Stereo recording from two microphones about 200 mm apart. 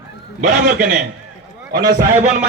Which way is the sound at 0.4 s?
40° right (ahead or behind).